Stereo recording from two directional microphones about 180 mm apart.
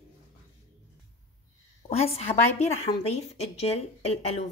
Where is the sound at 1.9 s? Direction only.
35° left (ahead or behind).